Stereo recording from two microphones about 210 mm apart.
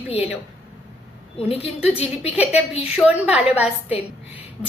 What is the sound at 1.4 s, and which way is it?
Speech, 30° left (ahead or behind).